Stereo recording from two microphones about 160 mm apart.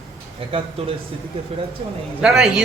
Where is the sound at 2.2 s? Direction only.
5° right (ahead or behind).